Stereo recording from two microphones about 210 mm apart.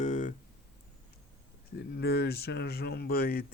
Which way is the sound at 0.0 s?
35° left (ahead or behind).